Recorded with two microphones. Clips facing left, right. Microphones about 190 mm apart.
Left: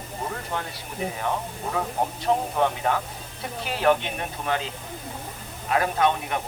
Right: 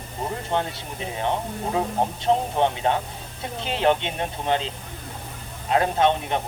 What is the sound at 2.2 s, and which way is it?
Speech, 25° right (ahead or behind).